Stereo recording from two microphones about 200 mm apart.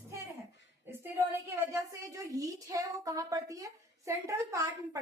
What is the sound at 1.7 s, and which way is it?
Speech, 15° right (ahead or behind).